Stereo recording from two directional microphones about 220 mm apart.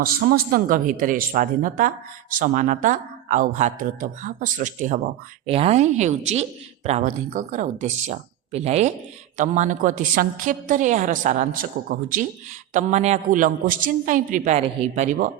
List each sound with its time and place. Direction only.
0.0 s a woman's voice: 40° right (ahead or behind)